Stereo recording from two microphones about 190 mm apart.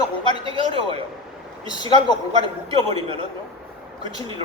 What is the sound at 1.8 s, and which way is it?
Speech, 20° left (ahead or behind).